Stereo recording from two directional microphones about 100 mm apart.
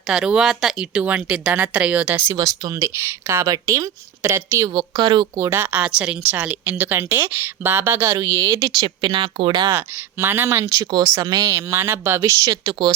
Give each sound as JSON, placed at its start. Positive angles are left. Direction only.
{"t": 0.1, "sound": "speech", "side_deg": -5}
{"t": 2.2, "sound": "speech", "side_deg": -35}
{"t": 3.0, "sound": "a woman's voice", "side_deg": -25}
{"t": 3.4, "sound": "speech", "side_deg": -40}
{"t": 4.2, "sound": "a woman's voice", "side_deg": -25}
{"t": 4.7, "sound": "speech", "side_deg": -50}
{"t": 5.4, "sound": "speech", "side_deg": -25}
{"t": 6.3, "sound": "a woman's voice", "side_deg": -20}
{"t": 8.8, "sound": "speech", "side_deg": -50}
{"t": 9.6, "sound": "a woman's voice", "side_deg": -25}
{"t": 10.7, "sound": "speech", "side_deg": -45}
{"t": 11.5, "sound": "a woman's voice", "side_deg": -25}